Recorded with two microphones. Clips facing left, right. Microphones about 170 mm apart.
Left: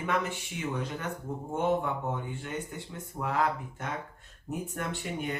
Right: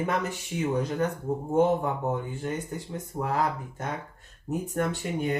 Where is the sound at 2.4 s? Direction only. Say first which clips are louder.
Right 5 dB; 40° right (ahead or behind).